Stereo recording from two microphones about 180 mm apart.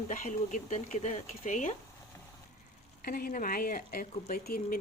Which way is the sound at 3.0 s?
55° left (ahead or behind).